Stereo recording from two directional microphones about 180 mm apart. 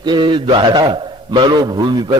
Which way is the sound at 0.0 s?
25° right (ahead or behind).